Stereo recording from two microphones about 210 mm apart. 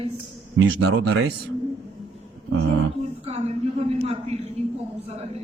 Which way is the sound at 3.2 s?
30° right (ahead or behind).